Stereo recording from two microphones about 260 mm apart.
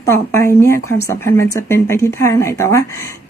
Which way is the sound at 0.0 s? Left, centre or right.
Centre.